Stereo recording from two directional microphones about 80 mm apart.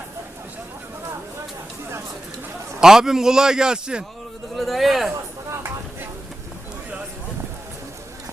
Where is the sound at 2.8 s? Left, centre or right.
Centre.